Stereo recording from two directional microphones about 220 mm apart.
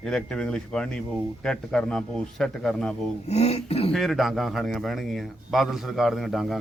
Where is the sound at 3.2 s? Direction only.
30° left (ahead or behind).